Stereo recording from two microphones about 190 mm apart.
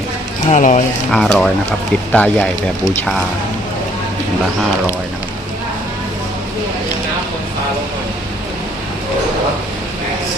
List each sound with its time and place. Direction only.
0.4 s speech: 40° left (ahead or behind)
1.1 s speech: 5° left (ahead or behind)